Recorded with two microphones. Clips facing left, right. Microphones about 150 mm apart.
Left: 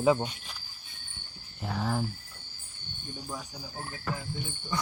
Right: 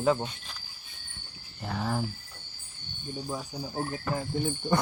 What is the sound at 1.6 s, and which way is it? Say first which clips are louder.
Speech: even; centre (ahead or behind).